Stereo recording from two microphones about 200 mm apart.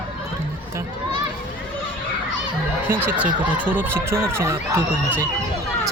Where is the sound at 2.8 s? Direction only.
10° right (ahead or behind).